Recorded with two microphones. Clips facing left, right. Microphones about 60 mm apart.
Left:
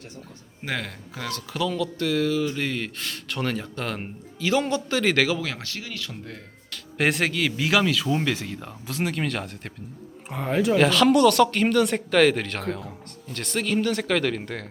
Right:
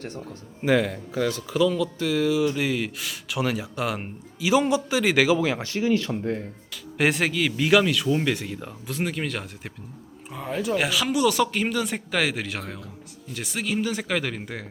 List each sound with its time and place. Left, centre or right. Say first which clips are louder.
0.6 s speech: right 9 dB; centre; by 6.4 s right
6.9 s speech: right 1 dB; centre
10.3 s speech: left 5 dB; left
10.8 s speech: left 7 dB; centre